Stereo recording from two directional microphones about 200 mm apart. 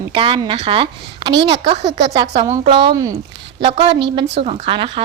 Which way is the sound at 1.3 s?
60° right (ahead or behind).